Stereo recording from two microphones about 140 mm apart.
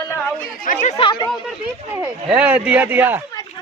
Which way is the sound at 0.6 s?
65° left (ahead or behind).